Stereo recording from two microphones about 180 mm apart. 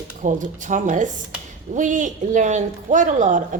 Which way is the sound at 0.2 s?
45° right (ahead or behind).